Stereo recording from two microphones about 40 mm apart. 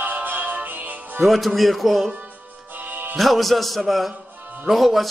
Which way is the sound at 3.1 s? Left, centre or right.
Centre.